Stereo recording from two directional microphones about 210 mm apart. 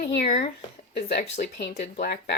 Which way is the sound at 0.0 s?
45° left (ahead or behind).